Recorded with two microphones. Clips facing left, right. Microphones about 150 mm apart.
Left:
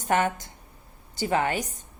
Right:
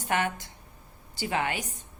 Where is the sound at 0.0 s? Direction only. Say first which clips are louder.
Left 4 dB; 40° left (ahead or behind).